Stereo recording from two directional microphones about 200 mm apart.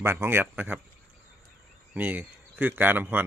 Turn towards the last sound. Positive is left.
turn(degrees=-10)  # may be behind; listen again after turning